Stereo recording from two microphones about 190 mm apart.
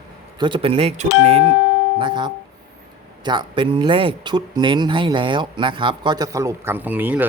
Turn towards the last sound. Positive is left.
turn(degrees=-10)  # may be behind; listen again after turning